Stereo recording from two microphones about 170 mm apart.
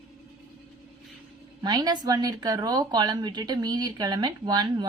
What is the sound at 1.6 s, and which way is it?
Speech, 25° right (ahead or behind).